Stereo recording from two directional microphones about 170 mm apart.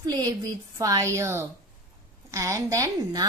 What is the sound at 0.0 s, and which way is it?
Speech, 25° right (ahead or behind).